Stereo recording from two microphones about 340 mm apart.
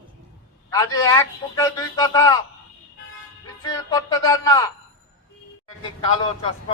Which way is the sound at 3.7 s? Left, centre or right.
Centre.